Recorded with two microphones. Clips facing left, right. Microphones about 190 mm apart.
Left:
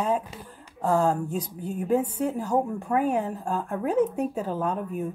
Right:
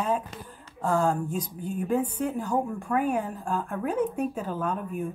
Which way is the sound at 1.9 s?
25° left (ahead or behind).